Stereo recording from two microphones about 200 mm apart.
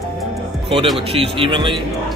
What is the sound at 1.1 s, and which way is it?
Speech, 30° right (ahead or behind).